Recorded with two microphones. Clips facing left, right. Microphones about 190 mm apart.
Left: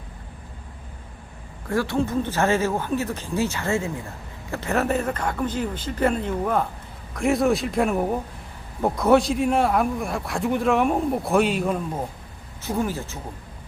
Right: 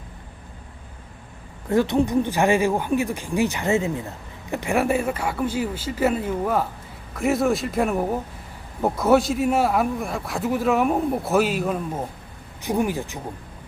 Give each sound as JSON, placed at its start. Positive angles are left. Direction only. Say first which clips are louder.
{"t": 1.7, "sound": "a man's voice", "louder": "right 4 dB", "side_deg": -20}
{"t": 12.6, "sound": "speech", "louder": "right 3 dB", "side_deg": -15}